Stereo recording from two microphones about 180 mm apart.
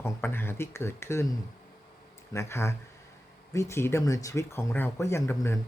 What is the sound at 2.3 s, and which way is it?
Speech, 15° left (ahead or behind).